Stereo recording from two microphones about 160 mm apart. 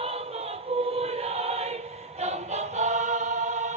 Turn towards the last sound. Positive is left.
turn(degrees=-45)  # may be behind; listen again after turning